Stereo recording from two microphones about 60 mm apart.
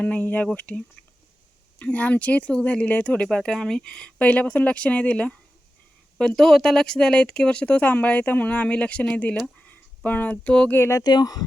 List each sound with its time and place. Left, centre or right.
0.0 s speech: left
3.2 s speech: centre
6.1 s speech: centre; by 9.3 s left
9.6 s a sound: left
10.4 s speech: centre
10.8 s speech: left
11.0 s speech: left